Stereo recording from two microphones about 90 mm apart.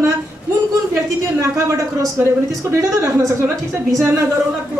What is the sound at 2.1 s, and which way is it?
Speech, 30° right (ahead or behind).